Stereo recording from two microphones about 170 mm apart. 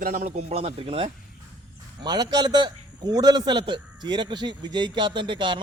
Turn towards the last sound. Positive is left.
turn(degrees=-30)  # may be behind; listen again after turning